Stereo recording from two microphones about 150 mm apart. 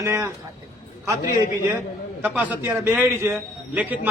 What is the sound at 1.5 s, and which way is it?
A man's voice, 20° right (ahead or behind).